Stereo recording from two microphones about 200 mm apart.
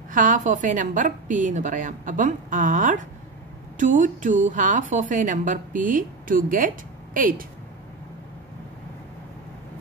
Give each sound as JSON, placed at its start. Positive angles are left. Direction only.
{"t": 0.1, "sound": "speech", "side_deg": -40}